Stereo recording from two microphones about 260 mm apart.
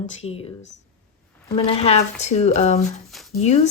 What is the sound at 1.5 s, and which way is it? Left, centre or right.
Speech, left.